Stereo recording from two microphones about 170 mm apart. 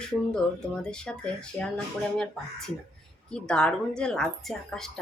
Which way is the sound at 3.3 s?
5° left (ahead or behind).